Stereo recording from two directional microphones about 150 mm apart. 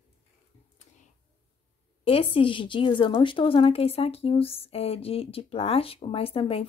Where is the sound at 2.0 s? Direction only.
40° left (ahead or behind).